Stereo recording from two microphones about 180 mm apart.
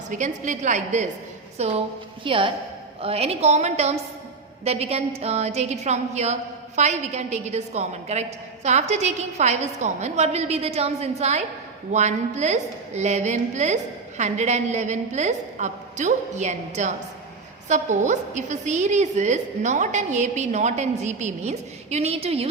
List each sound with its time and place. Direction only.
0.1 s a woman's voice: 45° right (ahead or behind)